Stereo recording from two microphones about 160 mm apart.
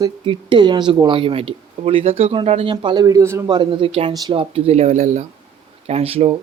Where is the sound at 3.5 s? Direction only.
30° right (ahead or behind).